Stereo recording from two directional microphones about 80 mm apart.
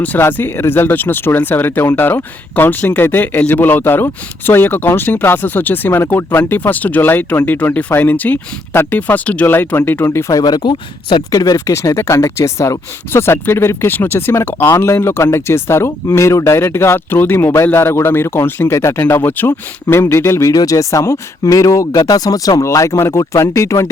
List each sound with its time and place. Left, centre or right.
0.0 s speech: left
10.4 s speech: left
11.3 s speech: left
20.5 s speech: left